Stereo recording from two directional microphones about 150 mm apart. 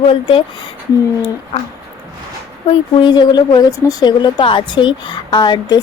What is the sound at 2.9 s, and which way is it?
A woman's voice, 30° left (ahead or behind).